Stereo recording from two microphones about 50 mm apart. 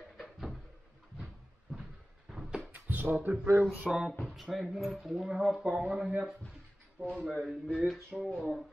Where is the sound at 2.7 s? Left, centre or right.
Right.